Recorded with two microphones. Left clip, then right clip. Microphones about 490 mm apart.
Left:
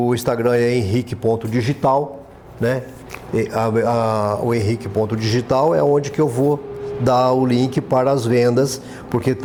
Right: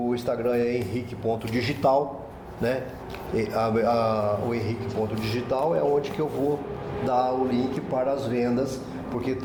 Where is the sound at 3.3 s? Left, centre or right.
Left.